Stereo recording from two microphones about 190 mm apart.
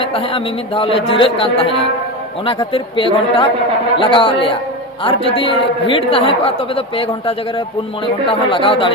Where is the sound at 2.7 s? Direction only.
30° left (ahead or behind).